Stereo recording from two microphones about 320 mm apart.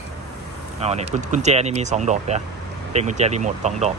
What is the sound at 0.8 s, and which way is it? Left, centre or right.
Speech, centre.